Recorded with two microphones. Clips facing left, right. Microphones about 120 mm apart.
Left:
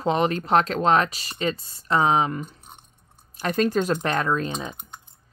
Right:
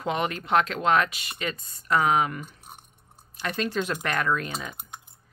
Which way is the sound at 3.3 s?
40° left (ahead or behind).